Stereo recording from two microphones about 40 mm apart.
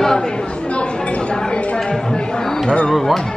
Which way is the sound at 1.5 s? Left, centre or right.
Left.